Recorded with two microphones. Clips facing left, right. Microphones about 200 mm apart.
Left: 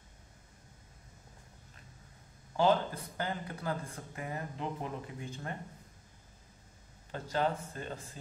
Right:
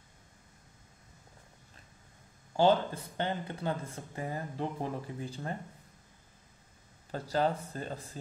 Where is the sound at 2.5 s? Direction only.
30° right (ahead or behind).